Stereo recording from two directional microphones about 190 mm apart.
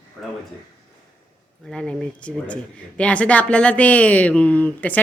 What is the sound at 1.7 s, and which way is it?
Speech, 5° left (ahead or behind).